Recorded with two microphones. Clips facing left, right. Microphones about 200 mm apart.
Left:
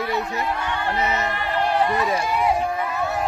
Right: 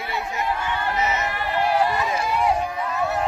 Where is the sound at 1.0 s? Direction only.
35° left (ahead or behind).